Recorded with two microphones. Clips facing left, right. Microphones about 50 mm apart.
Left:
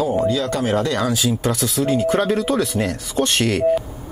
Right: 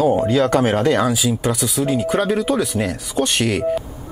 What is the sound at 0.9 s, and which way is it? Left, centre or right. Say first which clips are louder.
Speech: right 2 dB; centre.